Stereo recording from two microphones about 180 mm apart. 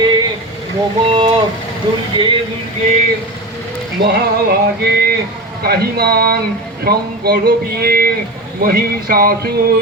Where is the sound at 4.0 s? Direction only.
65° right (ahead or behind).